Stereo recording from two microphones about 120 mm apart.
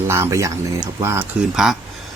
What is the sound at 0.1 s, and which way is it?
Speech, 25° right (ahead or behind).